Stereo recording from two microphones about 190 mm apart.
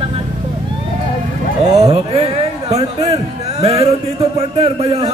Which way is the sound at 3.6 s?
30° right (ahead or behind).